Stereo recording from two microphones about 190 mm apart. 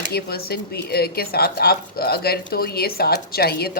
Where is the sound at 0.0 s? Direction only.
55° left (ahead or behind).